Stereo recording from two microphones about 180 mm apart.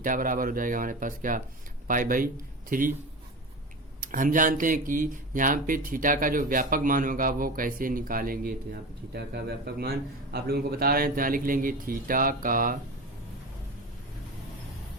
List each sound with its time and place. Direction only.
0.0 s speech: 50° right (ahead or behind)
4.0 s speech: 50° right (ahead or behind)